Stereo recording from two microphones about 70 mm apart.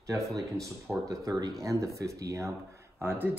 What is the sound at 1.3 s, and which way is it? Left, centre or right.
A man's voice, right.